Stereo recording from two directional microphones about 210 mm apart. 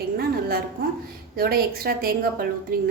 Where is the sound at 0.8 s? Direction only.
45° right (ahead or behind).